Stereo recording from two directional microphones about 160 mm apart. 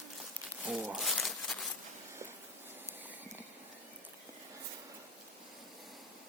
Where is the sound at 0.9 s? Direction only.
Centre (ahead or behind).